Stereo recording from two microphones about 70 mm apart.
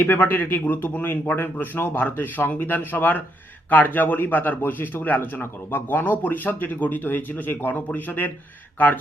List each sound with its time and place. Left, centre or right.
0.0 s a man's voice: left